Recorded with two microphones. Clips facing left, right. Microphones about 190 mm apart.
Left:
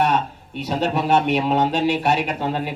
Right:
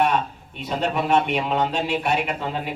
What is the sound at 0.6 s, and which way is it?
A man's voice, 40° left (ahead or behind).